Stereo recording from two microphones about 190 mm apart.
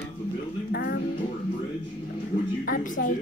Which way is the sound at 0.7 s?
55° left (ahead or behind).